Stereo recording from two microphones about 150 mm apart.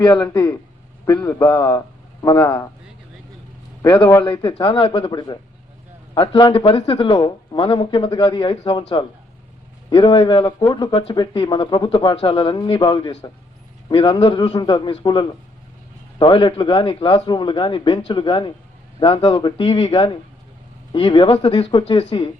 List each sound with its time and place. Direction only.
0.0 s speech: 30° left (ahead or behind)
1.2 s a man's voice: 15° left (ahead or behind)
3.8 s speech: 35° left (ahead or behind)
10.9 s speech: 35° left (ahead or behind)